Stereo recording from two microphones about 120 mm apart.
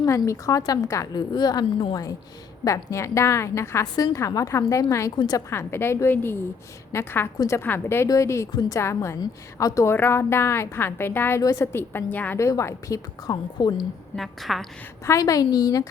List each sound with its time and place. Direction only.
0.0 s a woman's voice: 25° left (ahead or behind)
2.6 s a woman's voice: 25° left (ahead or behind)
5.5 s a woman's voice: 20° left (ahead or behind); by 13.8 s 40° left (ahead or behind)
14.2 s a woman's voice: centre (ahead or behind)
15.0 s a woman's voice: 25° left (ahead or behind)